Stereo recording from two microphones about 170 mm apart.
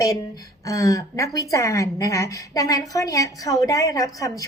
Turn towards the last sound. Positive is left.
turn(degrees=20)  # may be behind; listen again after turning